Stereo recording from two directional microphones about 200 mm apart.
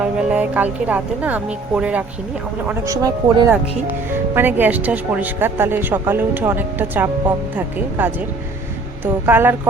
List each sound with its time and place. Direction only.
0.0 s speech: 5° right (ahead or behind)
9.2 s speech: 10° right (ahead or behind)